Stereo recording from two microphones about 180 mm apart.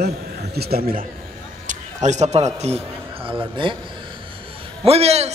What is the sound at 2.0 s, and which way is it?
A man's voice, 40° right (ahead or behind).